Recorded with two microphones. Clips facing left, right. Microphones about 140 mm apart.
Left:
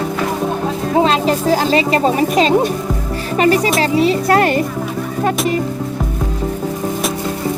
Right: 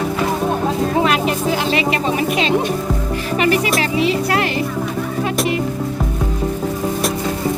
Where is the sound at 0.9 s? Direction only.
30° left (ahead or behind); by 4.6 s 45° left (ahead or behind).